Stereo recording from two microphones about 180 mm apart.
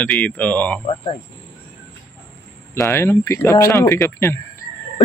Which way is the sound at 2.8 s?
15° left (ahead or behind).